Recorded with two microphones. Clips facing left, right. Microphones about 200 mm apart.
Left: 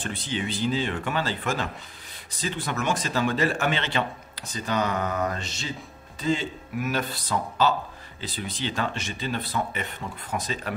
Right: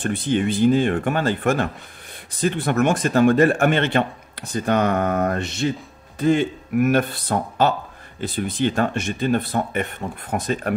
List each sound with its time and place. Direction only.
0.0 s speech: 55° right (ahead or behind)